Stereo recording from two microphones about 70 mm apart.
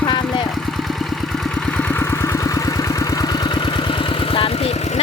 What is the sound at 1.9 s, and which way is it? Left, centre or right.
Vehicle, left.